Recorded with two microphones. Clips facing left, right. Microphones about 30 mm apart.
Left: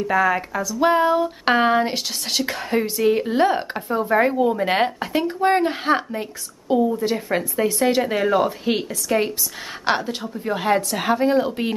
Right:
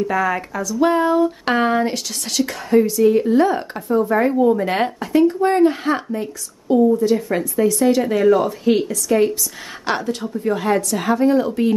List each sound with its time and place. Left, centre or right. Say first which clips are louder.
0.0 s speech: even; centre
10.2 s a woman's voice: right 6 dB; centre
10.5 s speech: right 1 dB; centre